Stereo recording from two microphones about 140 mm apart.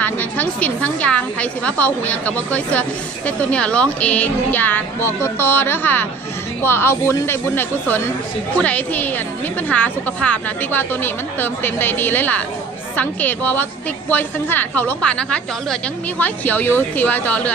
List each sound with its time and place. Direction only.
0.0 s a woman's voice: 10° left (ahead or behind)